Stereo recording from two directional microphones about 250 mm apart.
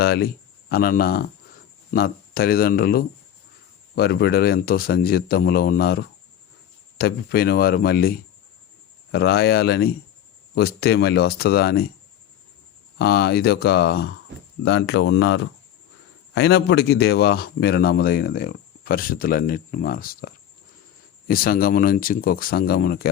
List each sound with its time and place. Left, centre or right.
0.0 s a man's voice: left
13.0 s a man's voice: left